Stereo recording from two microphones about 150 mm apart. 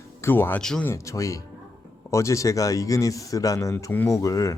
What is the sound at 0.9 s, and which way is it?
A man's voice, 20° left (ahead or behind).